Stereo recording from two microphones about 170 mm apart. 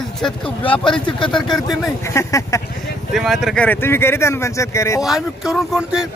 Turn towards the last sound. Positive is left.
turn(degrees=-5)  # may be behind; listen again after turning